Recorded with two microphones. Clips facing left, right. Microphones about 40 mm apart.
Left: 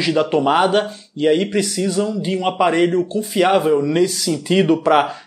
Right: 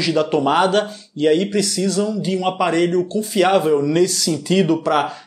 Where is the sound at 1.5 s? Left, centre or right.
Left.